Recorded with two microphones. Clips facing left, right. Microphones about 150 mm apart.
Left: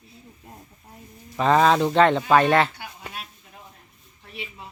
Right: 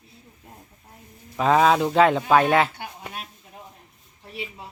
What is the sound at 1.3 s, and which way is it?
Speech, 5° right (ahead or behind).